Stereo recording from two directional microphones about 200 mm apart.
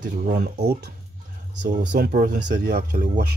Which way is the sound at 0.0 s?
40° right (ahead or behind).